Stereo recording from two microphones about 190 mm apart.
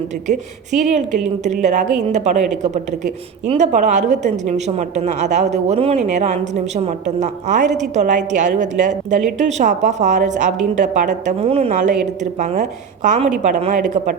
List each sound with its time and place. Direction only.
0.9 s a woman's voice: 40° right (ahead or behind)